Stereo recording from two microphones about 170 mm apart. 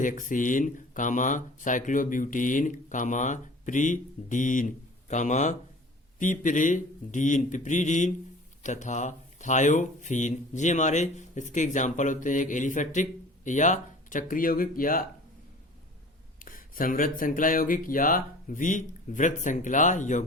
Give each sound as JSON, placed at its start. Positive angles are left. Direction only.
{"t": 0.0, "sound": "speech", "side_deg": 50}
{"t": 16.4, "sound": "speech", "side_deg": 55}